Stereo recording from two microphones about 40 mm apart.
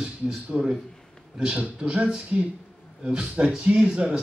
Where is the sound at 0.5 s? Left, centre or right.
Centre.